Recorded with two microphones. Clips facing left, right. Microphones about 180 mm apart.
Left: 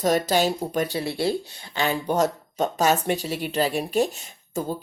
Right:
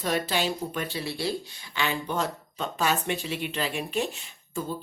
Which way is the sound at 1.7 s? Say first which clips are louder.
Left 6 dB; 40° left (ahead or behind).